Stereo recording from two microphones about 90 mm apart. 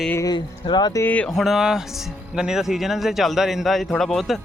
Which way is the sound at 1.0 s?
15° left (ahead or behind).